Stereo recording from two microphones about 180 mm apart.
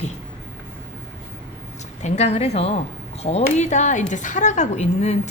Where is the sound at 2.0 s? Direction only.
40° left (ahead or behind).